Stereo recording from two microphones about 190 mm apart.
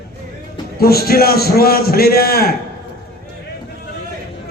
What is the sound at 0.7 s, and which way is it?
A man's voice, 55° left (ahead or behind).